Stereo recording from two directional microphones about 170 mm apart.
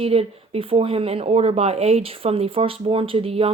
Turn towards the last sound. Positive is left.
turn(degrees=-35)  # may be behind; listen again after turning